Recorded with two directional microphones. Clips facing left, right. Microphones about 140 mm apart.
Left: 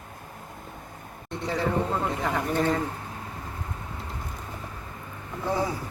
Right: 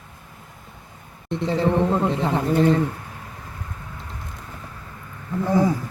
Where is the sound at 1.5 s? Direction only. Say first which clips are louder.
Right 6 dB; 25° right (ahead or behind).